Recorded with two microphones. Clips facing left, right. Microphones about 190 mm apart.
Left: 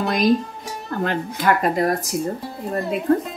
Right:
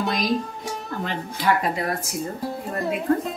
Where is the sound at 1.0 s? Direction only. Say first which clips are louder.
Left 4 dB; 45° left (ahead or behind).